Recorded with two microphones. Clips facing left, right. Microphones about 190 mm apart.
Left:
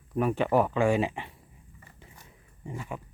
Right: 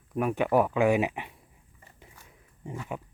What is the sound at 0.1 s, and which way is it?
Speech, 10° right (ahead or behind).